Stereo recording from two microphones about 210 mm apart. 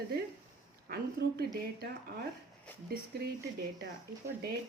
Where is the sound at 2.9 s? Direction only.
50° right (ahead or behind).